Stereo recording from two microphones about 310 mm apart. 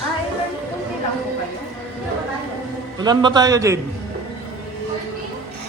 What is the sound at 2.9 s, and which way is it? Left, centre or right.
Speech, centre.